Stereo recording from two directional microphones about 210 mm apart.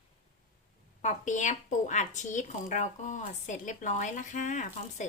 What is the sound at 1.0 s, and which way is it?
Speech, 35° left (ahead or behind).